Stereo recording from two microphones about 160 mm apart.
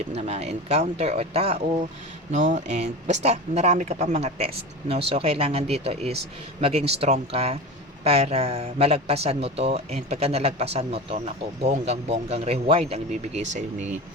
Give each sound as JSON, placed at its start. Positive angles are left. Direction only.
{"t": 0.1, "sound": "speech", "side_deg": -45}
{"t": 2.3, "sound": "speech", "side_deg": -50}